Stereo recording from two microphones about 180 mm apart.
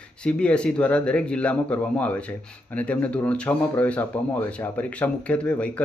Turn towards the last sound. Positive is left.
turn(degrees=5)  # may be behind; listen again after turning